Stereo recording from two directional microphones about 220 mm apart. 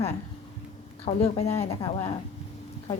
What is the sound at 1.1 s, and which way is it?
A woman's voice, 25° left (ahead or behind).